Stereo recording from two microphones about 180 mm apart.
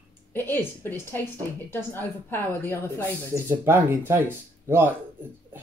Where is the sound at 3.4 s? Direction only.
15° right (ahead or behind).